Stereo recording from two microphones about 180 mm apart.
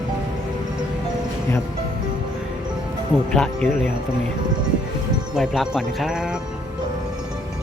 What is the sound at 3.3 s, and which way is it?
Speech, 5° left (ahead or behind).